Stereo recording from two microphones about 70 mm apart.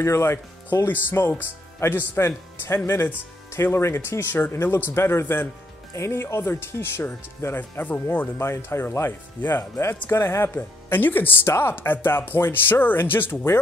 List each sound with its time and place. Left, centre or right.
0.0 s speech: left
5.9 s speech: left
8.5 s speech: left